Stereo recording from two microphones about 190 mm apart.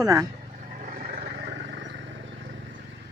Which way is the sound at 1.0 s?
55° right (ahead or behind).